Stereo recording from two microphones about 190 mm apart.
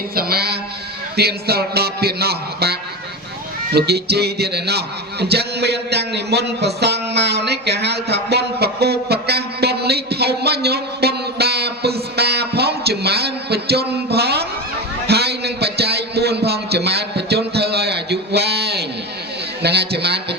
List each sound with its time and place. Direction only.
0.2 s a man's voice: 55° right (ahead or behind)
15.0 s a sound: 60° right (ahead or behind)
19.6 s a man's voice: 60° right (ahead or behind)